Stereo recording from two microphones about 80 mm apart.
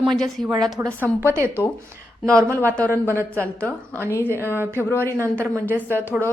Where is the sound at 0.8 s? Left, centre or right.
Right.